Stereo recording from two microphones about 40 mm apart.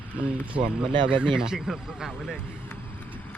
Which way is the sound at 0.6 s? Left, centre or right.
Right.